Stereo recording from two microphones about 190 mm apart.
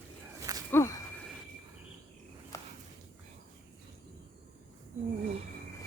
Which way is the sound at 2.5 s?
15° left (ahead or behind).